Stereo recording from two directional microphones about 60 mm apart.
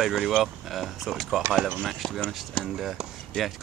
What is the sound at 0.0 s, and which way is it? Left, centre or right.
Speech, centre.